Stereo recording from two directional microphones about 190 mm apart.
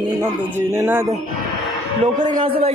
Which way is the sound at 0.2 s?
10° right (ahead or behind).